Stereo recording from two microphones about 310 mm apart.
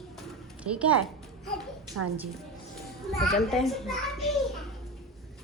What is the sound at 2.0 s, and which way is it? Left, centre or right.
Speech, right.